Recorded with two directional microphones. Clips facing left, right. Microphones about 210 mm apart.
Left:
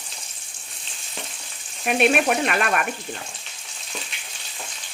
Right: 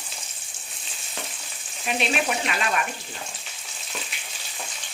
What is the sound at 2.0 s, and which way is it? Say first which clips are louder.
Speech: left 7 dB; 55° left (ahead or behind).